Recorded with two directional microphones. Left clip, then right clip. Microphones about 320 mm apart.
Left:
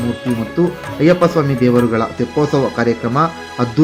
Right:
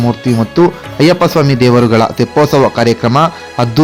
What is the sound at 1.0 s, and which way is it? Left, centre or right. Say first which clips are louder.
A man's voice: right 3 dB; right.